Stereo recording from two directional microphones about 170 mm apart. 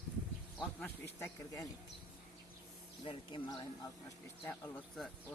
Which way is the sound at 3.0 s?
30° left (ahead or behind).